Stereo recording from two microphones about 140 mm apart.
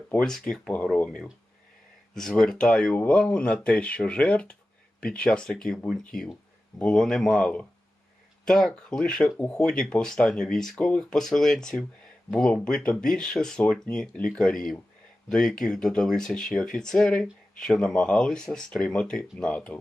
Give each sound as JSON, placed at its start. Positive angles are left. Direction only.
{"t": 0.1, "sound": "speech", "side_deg": 5}